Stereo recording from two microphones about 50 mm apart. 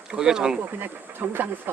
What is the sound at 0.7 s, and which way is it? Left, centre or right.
Speech, right.